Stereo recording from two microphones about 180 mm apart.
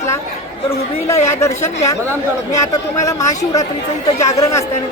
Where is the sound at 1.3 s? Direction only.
15° left (ahead or behind).